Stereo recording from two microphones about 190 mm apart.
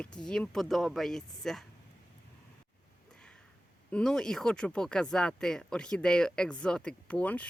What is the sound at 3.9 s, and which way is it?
Speech, 5° left (ahead or behind).